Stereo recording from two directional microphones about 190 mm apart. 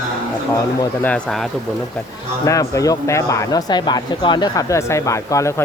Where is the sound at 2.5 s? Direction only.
15° left (ahead or behind).